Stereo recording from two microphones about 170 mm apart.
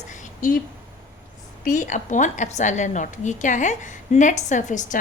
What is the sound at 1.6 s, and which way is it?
A woman's voice, 50° left (ahead or behind).